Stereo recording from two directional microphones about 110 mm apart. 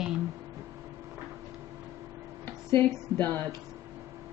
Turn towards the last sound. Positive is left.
turn(degrees=20)  # may be behind; listen again after turning